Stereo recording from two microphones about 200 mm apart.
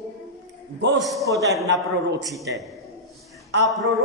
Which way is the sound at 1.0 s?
Centre (ahead or behind).